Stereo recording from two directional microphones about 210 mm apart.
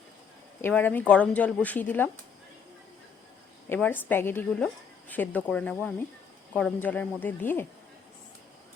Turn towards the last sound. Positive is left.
turn(degrees=10)  # may be behind; listen again after turning